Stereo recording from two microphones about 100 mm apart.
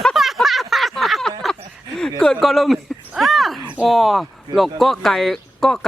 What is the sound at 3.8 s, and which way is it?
Speech, centre (ahead or behind).